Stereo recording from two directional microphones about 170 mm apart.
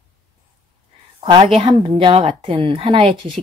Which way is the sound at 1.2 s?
30° right (ahead or behind).